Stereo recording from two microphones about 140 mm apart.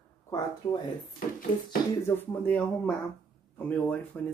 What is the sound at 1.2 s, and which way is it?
Speech, 80° left.